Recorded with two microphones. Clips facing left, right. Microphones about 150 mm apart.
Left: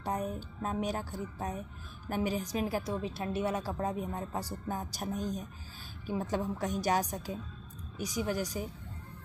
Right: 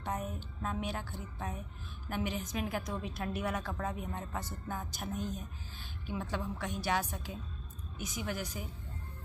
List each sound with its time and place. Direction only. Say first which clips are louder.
0.0 s a woman's voice: left 4 dB; 35° left (ahead or behind)